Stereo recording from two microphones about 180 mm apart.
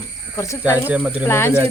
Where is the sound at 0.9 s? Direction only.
10° right (ahead or behind).